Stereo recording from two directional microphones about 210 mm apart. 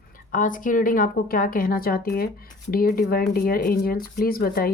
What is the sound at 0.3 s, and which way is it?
A woman's voice, 40° left (ahead or behind).